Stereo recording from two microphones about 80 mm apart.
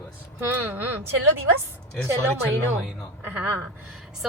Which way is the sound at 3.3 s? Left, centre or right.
Right.